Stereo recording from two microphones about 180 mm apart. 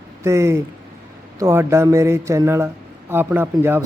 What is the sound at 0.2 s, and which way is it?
Speech, 15° right (ahead or behind).